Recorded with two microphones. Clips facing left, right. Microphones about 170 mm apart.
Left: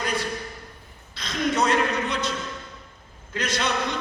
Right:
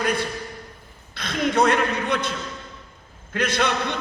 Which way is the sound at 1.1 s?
60° right (ahead or behind).